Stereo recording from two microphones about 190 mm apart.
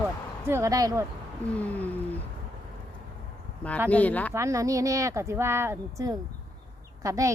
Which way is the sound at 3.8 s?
10° left (ahead or behind).